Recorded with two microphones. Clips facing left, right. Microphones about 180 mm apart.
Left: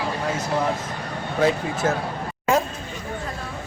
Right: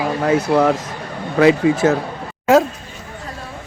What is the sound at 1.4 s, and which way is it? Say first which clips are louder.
Speech: right 9 dB; 90° right.